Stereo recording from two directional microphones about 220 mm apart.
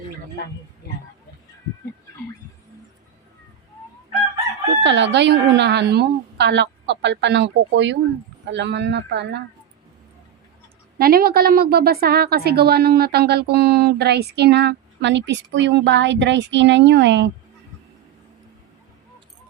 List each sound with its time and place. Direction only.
4.8 s a woman's voice: 55° right (ahead or behind)
10.9 s a woman's voice: 45° right (ahead or behind)